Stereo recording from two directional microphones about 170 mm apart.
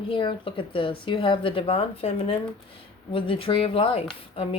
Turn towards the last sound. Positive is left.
turn(degrees=30)  # may be behind; listen again after turning